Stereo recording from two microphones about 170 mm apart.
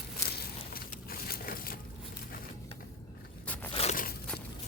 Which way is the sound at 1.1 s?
60° left (ahead or behind).